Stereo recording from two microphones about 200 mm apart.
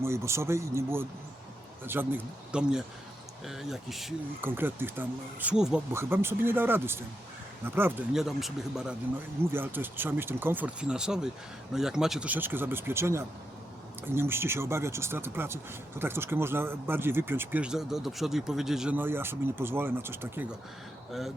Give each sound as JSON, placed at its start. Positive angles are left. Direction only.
{"t": 0.0, "sound": "speech", "side_deg": -15}